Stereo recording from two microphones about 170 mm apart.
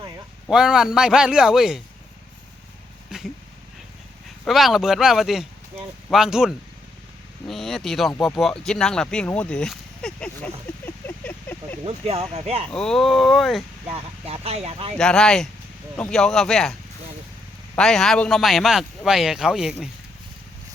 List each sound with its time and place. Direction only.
0.4 s speech: 5° right (ahead or behind)
3.1 s vehicle: 5° right (ahead or behind)
4.4 s speech: centre (ahead or behind)
11.9 s speech: 35° right (ahead or behind)
12.7 s speech: 5° left (ahead or behind)
13.9 s speech: 35° right (ahead or behind)
14.9 s speech: 5° left (ahead or behind)
17.7 s speech: centre (ahead or behind)